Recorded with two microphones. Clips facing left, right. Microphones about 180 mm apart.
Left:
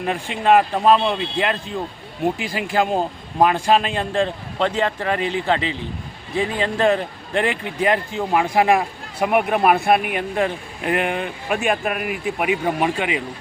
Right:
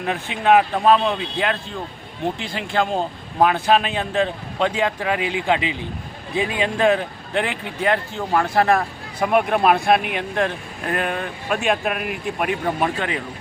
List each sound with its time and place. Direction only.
0.0 s speech: centre (ahead or behind)